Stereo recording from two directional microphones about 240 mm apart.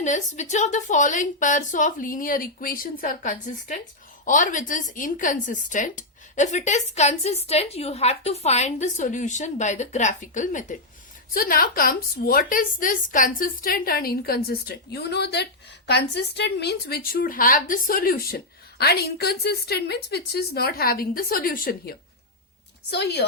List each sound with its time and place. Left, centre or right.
0.0 s a woman's voice: left